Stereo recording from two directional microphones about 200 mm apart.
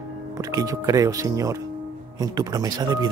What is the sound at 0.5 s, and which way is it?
Speech, 20° right (ahead or behind).